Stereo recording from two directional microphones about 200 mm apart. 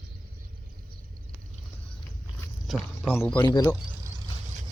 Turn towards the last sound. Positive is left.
turn(degrees=15)  # may be behind; listen again after turning